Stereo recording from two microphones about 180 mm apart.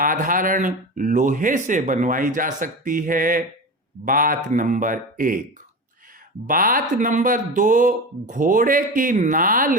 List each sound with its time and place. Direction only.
0.0 s speech: 50° right (ahead or behind)
6.5 s speech: 50° right (ahead or behind)